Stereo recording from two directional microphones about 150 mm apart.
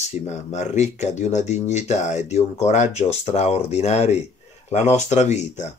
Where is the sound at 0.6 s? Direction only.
50° left (ahead or behind).